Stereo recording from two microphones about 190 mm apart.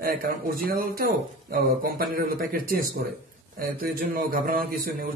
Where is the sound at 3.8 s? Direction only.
50° right (ahead or behind).